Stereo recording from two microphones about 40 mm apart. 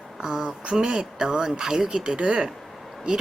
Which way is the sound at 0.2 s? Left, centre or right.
Centre.